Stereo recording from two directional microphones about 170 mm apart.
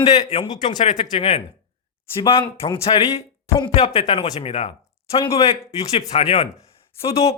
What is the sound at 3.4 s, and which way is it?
Speech, 15° left (ahead or behind).